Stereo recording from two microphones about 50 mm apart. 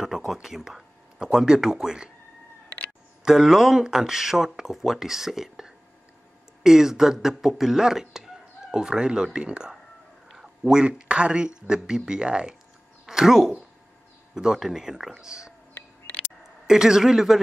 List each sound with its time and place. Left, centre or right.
0.0 s speech: centre
3.3 s speech: centre
13.0 s speech: centre
16.6 s speech: centre